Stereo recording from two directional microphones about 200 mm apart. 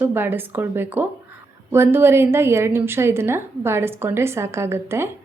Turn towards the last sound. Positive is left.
turn(degrees=-10)  # may be behind; listen again after turning